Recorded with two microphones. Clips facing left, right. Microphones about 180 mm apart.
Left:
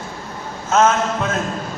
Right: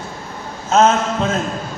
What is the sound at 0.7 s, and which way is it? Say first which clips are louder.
Speech: right 2 dB; 30° right (ahead or behind).